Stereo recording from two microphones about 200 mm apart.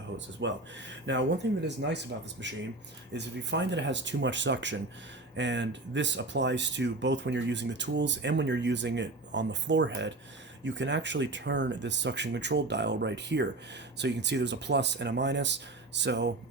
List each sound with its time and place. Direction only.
0.3 s speech: 65° right (ahead or behind)